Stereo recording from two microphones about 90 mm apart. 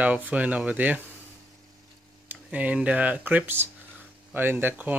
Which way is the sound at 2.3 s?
15° right (ahead or behind).